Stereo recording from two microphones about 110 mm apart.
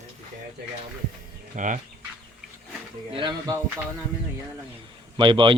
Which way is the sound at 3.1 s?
50° right (ahead or behind).